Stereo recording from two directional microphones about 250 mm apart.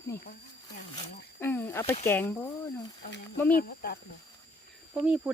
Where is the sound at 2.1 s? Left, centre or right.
Centre.